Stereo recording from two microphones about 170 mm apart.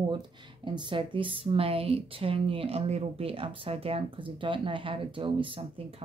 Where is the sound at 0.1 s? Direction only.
25° right (ahead or behind).